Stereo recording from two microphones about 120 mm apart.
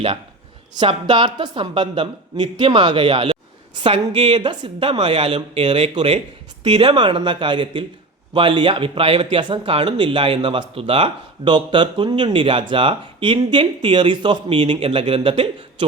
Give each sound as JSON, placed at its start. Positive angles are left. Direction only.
{"t": 0.8, "sound": "a woman's voice", "side_deg": -40}